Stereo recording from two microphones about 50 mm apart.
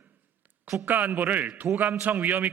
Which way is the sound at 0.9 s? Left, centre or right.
Right.